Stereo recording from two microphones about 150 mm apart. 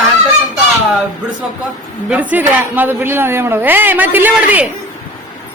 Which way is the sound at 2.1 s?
10° right (ahead or behind).